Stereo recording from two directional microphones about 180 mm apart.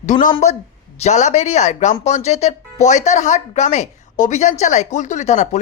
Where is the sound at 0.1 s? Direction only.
45° left (ahead or behind).